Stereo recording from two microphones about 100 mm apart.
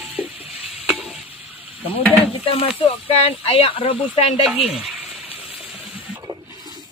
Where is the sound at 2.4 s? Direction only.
70° left (ahead or behind).